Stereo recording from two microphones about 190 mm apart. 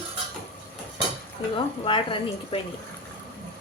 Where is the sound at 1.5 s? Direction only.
25° left (ahead or behind).